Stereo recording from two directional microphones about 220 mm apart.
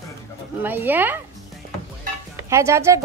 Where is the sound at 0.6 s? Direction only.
10° right (ahead or behind).